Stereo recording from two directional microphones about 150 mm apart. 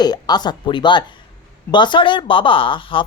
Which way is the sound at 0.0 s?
25° left (ahead or behind).